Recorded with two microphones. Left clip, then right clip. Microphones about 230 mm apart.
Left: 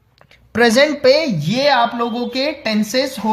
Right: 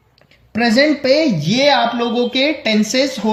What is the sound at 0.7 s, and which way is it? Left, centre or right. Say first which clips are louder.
Speech: even; left.